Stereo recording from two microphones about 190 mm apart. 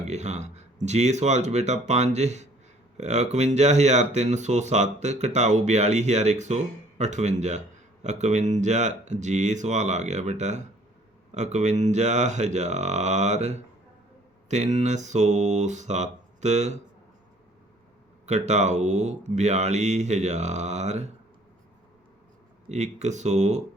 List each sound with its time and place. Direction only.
0.0 s speech: 35° right (ahead or behind)
18.3 s speech: 35° right (ahead or behind)
22.7 s speech: 35° right (ahead or behind)